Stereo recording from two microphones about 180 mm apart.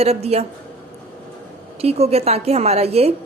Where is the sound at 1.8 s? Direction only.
35° right (ahead or behind).